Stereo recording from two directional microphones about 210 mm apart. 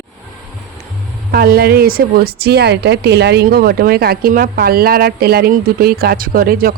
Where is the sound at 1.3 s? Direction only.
45° right (ahead or behind).